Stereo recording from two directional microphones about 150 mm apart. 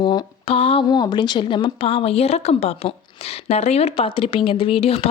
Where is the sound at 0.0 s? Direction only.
35° left (ahead or behind).